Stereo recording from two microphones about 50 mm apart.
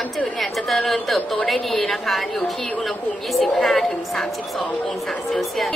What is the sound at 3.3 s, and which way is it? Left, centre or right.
Speech, centre.